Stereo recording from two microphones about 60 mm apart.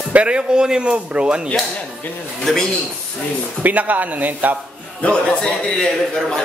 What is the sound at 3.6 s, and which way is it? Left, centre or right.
Speech, right.